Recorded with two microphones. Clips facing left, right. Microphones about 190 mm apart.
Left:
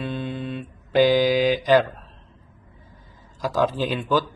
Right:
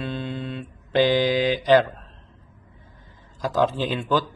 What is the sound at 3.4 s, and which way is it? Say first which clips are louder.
Speech: even; 10° left (ahead or behind).